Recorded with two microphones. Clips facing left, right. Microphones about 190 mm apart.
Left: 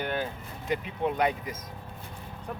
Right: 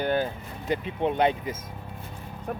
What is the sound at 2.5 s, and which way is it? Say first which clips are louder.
Speech: right 5 dB; 60° right (ahead or behind).